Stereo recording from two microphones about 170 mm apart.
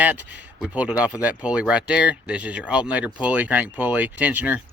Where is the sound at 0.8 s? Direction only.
5° right (ahead or behind).